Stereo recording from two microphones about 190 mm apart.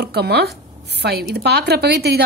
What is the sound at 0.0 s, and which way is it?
A woman's voice, 60° right (ahead or behind).